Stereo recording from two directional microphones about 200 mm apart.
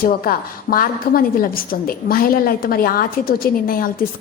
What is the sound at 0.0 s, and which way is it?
A woman's voice, 45° left (ahead or behind).